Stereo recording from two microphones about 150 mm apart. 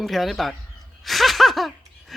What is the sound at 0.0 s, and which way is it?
Speech, centre (ahead or behind).